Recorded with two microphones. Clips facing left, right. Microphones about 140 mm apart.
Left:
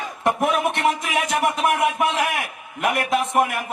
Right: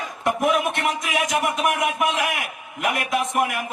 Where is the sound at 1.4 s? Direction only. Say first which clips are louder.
Left 2 dB; 30° left (ahead or behind).